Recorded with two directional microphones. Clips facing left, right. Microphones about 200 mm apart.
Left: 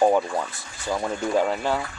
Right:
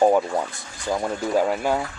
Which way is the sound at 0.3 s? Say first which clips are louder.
Right 2 dB; 15° right (ahead or behind).